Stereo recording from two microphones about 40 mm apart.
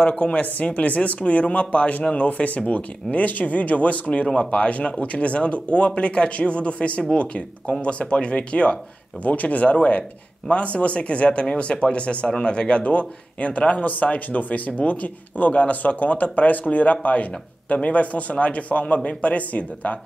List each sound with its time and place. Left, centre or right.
0.2 s speech: left